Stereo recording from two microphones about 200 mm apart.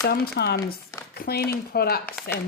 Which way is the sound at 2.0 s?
10° left (ahead or behind).